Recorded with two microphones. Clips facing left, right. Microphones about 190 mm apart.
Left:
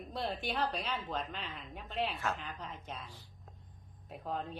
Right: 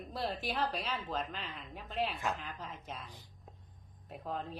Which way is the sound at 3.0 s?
15° right (ahead or behind).